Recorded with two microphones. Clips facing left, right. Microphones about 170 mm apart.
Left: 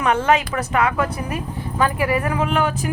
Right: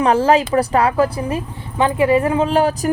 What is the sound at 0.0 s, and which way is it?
A woman's voice, 30° right (ahead or behind).